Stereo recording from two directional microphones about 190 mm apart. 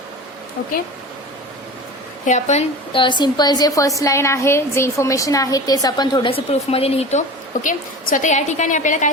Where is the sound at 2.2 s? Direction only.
35° left (ahead or behind).